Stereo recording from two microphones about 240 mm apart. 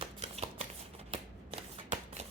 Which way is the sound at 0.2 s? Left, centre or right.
Right.